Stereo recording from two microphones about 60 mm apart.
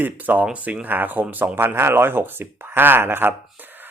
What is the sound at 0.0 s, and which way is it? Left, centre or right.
Speech, right.